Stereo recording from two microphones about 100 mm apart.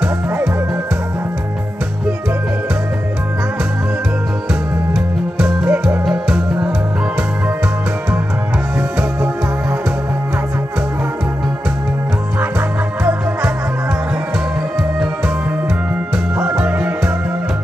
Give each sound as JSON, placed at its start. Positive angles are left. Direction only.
{"t": 4.9, "sound": "music", "side_deg": -5}
{"t": 16.3, "sound": "music", "side_deg": -15}